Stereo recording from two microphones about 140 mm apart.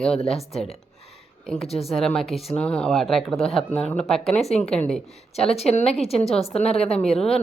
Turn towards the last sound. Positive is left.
turn(degrees=5)  # may be behind; listen again after turning